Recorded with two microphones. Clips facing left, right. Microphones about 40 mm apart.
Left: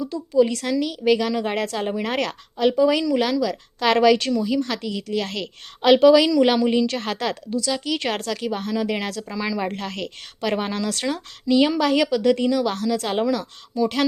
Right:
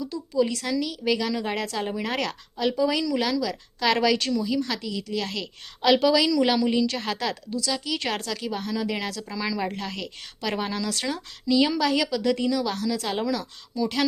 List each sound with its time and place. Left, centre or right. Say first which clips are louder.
0.3 s speech: left 5 dB; left